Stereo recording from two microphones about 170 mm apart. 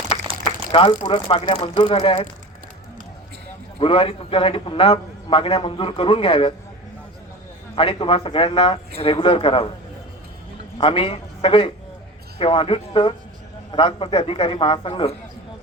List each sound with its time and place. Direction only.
0.7 s a man's voice: 30° left (ahead or behind)
3.8 s a man's voice: 35° left (ahead or behind)
7.8 s a man's voice: 30° left (ahead or behind)
10.8 s a man's voice: 30° left (ahead or behind)